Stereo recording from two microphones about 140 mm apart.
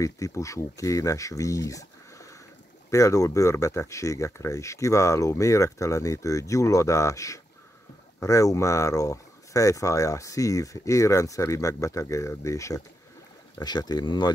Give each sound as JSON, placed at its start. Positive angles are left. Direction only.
{"t": 0.0, "sound": "speech", "side_deg": 25}